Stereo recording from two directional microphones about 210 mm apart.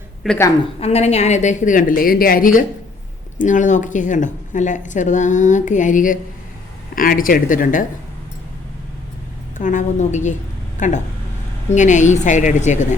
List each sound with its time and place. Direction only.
0.2 s a woman's voice: centre (ahead or behind)
0.8 s speech: 30° left (ahead or behind)
9.6 s speech: 35° left (ahead or behind)